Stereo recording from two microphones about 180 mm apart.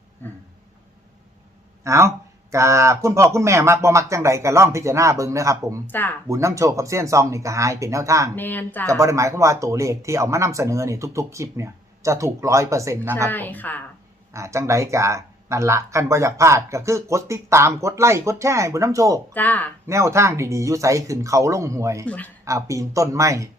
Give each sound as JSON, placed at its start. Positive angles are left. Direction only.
{"t": 1.8, "sound": "speech", "side_deg": -15}
{"t": 5.9, "sound": "speech", "side_deg": 10}
{"t": 6.2, "sound": "speech", "side_deg": -15}
{"t": 8.4, "sound": "speech", "side_deg": 10}
{"t": 8.9, "sound": "speech", "side_deg": -15}
{"t": 13.3, "sound": "speech", "side_deg": 10}
{"t": 14.3, "sound": "speech", "side_deg": -15}
{"t": 19.3, "sound": "speech", "side_deg": 10}
{"t": 19.9, "sound": "speech", "side_deg": -15}
{"t": 22.0, "sound": "speech", "side_deg": 10}
{"t": 22.4, "sound": "speech", "side_deg": -15}